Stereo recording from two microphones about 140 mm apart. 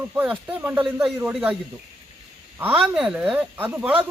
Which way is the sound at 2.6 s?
5° right (ahead or behind).